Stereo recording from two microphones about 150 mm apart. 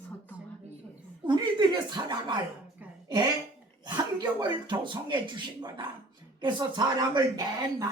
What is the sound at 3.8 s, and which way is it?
Speech, 30° right (ahead or behind).